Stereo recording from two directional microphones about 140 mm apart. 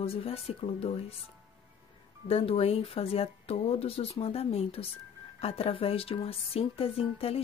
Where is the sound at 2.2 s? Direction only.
45° left (ahead or behind).